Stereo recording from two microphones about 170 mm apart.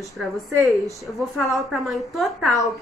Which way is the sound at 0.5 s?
20° right (ahead or behind).